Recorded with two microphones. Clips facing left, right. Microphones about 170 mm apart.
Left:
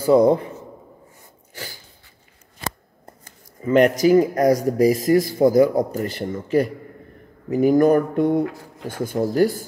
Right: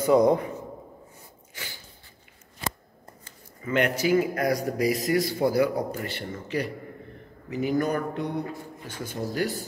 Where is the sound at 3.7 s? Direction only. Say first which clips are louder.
Left 8 dB; 40° left (ahead or behind).